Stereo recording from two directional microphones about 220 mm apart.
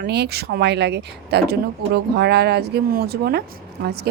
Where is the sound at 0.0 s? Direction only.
50° right (ahead or behind).